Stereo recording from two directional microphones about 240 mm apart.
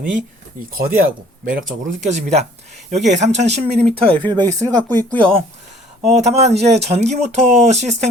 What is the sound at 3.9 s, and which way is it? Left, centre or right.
Speech, right.